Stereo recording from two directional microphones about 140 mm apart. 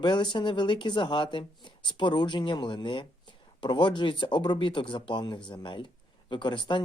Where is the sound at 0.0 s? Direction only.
35° left (ahead or behind).